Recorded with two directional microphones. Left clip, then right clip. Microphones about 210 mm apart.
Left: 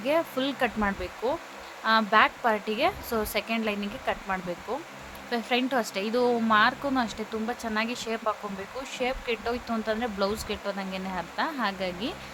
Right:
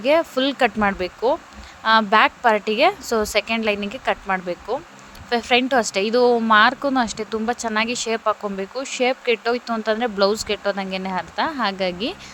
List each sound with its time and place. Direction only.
0.0 s a woman's voice: 35° right (ahead or behind)